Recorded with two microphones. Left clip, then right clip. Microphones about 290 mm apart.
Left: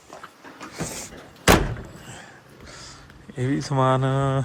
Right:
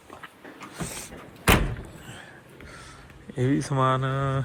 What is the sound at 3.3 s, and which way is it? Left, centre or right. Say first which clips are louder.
Speech: left 1 dB; centre.